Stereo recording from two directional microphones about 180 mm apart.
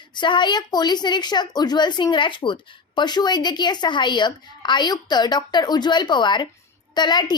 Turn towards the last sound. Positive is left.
turn(degrees=25)  # may be behind; listen again after turning